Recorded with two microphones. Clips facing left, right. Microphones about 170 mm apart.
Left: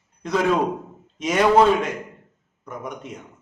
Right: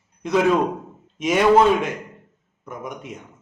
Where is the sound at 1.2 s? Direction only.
5° right (ahead or behind).